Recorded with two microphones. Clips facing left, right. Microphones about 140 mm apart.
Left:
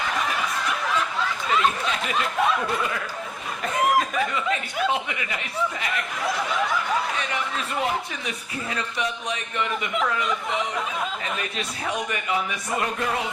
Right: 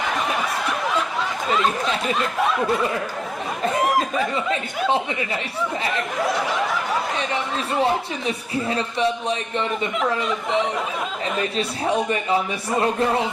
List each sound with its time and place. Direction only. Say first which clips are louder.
2.1 s snicker: right 1 dB; centre (ahead or behind)
4.4 s speech: right 2 dB; 30° right (ahead or behind)
7.8 s speech: right 6 dB; 30° right (ahead or behind)
11.3 s speech: right 7 dB; 30° right (ahead or behind)